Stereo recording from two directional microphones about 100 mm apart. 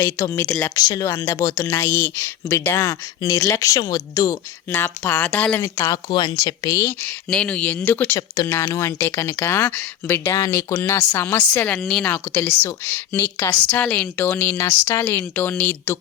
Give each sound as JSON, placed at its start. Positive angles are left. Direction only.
{"t": 0.0, "sound": "speech", "side_deg": 30}
{"t": 0.8, "sound": "speech", "side_deg": 35}
{"t": 4.7, "sound": "speech", "side_deg": 20}
{"t": 5.6, "sound": "speech", "side_deg": 35}
{"t": 6.7, "sound": "speech", "side_deg": 25}
{"t": 7.3, "sound": "speech", "side_deg": 10}
{"t": 8.4, "sound": "speech", "side_deg": 30}
{"t": 11.8, "sound": "speech", "side_deg": 0}
{"t": 12.0, "sound": "speech", "side_deg": 15}